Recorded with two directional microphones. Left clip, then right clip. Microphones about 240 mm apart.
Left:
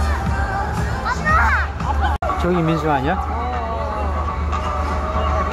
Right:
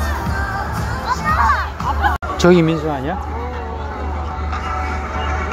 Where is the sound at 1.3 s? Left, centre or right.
Left.